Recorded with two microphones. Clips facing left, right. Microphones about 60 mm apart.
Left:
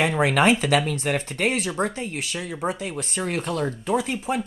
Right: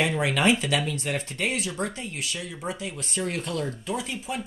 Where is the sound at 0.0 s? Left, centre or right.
Left.